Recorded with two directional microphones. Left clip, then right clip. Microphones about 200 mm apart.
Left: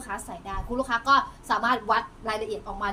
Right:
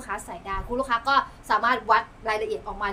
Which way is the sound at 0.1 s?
20° right (ahead or behind).